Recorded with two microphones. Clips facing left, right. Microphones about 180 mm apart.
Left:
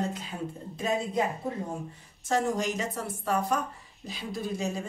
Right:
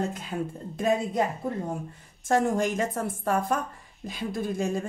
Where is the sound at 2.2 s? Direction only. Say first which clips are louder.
Right 4 dB; 50° right (ahead or behind).